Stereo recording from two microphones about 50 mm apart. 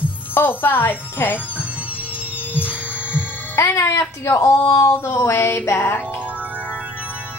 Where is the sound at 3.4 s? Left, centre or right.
Left.